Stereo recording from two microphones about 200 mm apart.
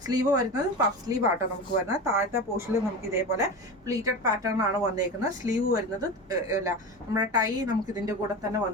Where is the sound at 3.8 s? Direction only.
15° right (ahead or behind).